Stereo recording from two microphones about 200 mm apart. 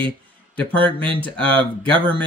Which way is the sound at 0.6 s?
25° right (ahead or behind).